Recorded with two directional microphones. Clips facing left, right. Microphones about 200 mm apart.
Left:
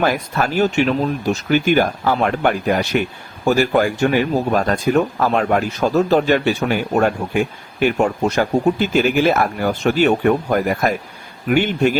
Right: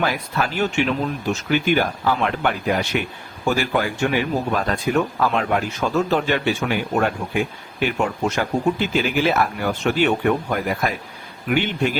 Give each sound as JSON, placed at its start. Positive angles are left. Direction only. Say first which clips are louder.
{"t": 0.0, "sound": "speech", "louder": "left 4 dB", "side_deg": 45}